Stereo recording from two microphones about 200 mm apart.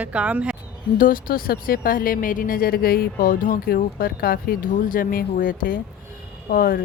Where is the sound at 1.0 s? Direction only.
45° left (ahead or behind).